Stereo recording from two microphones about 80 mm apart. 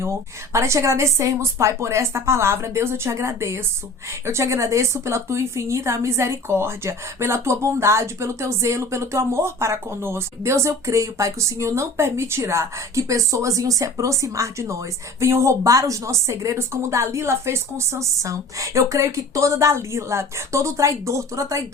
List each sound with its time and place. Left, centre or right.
0.0 s a woman's voice: right